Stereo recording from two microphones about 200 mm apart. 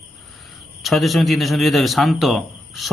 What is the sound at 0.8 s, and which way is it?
A man's voice, centre (ahead or behind).